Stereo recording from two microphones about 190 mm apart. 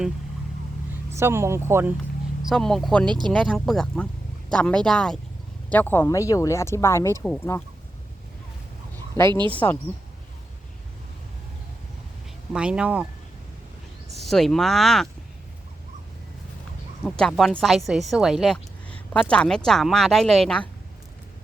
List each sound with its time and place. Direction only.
1.1 s speech: 15° right (ahead or behind)
2.4 s speech: centre (ahead or behind)
3.1 s speech: 25° right (ahead or behind)
3.3 s speech: 5° left (ahead or behind)
9.6 s speech: 15° left (ahead or behind)
12.5 s speech: 5° right (ahead or behind)
14.2 s speech: centre (ahead or behind)
17.0 s speech: 5° left (ahead or behind)